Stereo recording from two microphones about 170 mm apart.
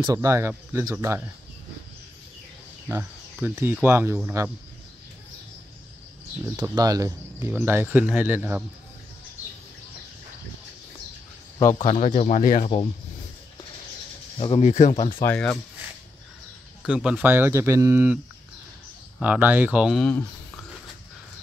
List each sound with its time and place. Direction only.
0.0 s speech: 20° right (ahead or behind)
2.9 s speech: 10° right (ahead or behind)
6.5 s speech: 20° right (ahead or behind)
11.8 s speech: 35° left (ahead or behind)
14.4 s speech: 35° left (ahead or behind)
15.2 s speech: 5° left (ahead or behind)
16.8 s speech: 5° right (ahead or behind)
20.1 s a sound: 10° left (ahead or behind)